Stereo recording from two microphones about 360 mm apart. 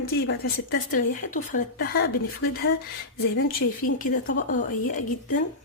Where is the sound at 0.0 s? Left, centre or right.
Left.